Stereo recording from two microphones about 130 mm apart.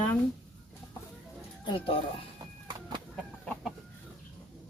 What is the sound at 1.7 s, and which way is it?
Speech, 40° left (ahead or behind).